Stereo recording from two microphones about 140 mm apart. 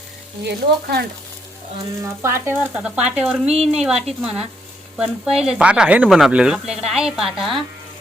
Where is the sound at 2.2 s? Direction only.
20° right (ahead or behind).